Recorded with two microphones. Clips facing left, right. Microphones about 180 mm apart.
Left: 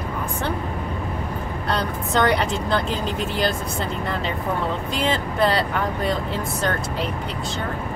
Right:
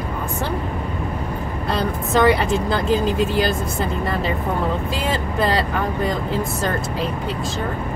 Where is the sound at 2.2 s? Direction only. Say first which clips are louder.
Right 4 dB; 10° right (ahead or behind).